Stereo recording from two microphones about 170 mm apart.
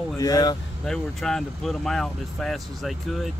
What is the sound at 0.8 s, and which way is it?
Speech, 5° left (ahead or behind).